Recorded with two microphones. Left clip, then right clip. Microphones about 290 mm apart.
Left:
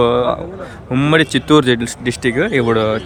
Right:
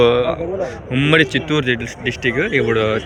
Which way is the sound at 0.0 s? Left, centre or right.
Centre.